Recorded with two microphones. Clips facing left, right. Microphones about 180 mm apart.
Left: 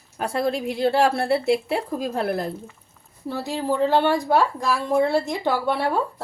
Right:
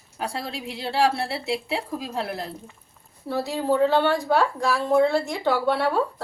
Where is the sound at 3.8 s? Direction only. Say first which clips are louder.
Left 1 dB; 15° left (ahead or behind).